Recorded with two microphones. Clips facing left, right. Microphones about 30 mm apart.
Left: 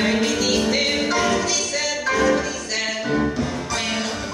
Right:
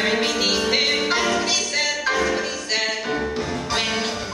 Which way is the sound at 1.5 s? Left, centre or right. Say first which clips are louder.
Right 1 dB; right.